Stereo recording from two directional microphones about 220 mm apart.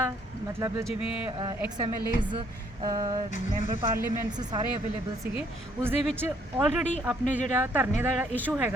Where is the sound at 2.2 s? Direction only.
20° right (ahead or behind).